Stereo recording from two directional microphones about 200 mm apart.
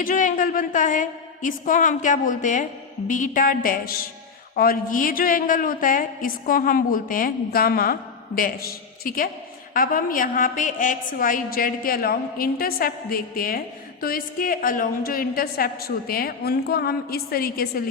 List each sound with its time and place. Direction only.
0.0 s a woman's voice: 40° left (ahead or behind)
9.0 s a woman's voice: 45° left (ahead or behind)